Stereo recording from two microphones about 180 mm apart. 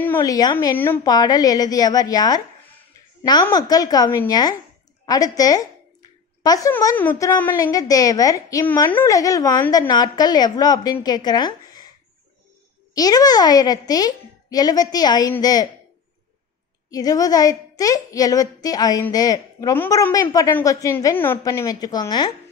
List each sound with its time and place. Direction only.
0.2 s a woman's voice: 20° left (ahead or behind)
3.4 s a woman's voice: 20° left (ahead or behind)
12.9 s a woman's voice: 20° left (ahead or behind)
16.9 s a woman's voice: 20° left (ahead or behind)